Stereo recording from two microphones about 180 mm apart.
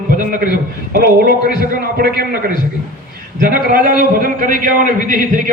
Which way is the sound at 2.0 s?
60° right (ahead or behind).